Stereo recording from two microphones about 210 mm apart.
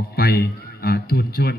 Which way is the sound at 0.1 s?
50° left (ahead or behind).